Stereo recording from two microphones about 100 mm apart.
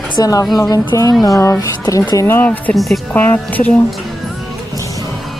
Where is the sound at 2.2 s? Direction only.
20° left (ahead or behind).